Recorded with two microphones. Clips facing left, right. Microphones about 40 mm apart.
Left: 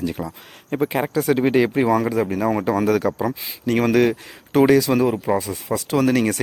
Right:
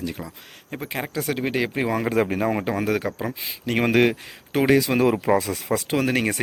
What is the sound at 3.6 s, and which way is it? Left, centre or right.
Speech, right.